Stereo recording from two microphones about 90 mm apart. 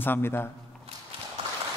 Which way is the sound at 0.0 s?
25° left (ahead or behind).